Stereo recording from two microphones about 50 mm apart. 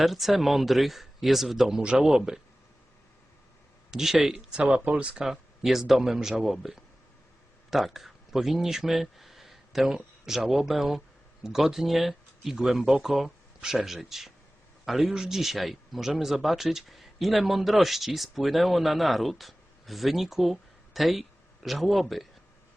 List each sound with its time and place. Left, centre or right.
0.0 s speech: centre
1.8 s speech: centre
3.9 s speech: centre
4.5 s speech: right
5.2 s speech: centre